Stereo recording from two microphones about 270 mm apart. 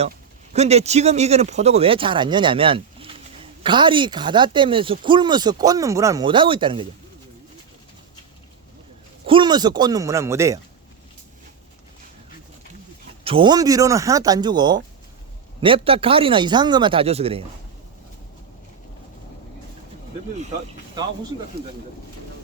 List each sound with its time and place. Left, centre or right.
0.5 s speech: right
9.2 s speech: centre
13.2 s speech: centre
21.5 s speech: right